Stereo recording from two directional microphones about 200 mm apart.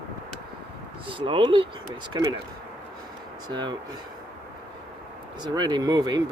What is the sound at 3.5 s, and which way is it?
Speech, 20° right (ahead or behind).